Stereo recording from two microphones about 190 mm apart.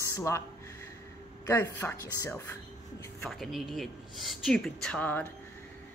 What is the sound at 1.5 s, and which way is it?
Speech, 10° left (ahead or behind).